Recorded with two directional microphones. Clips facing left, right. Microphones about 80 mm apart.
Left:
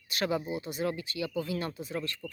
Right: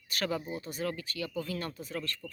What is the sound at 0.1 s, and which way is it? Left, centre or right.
Speech, centre.